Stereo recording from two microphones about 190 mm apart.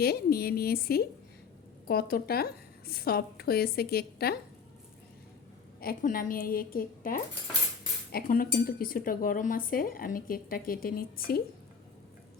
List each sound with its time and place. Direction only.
0.0 s a woman's voice: 55° left (ahead or behind)
5.8 s speech: 50° left (ahead or behind)